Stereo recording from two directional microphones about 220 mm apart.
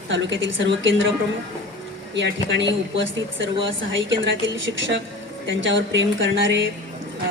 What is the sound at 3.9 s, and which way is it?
Speech, 55° right (ahead or behind).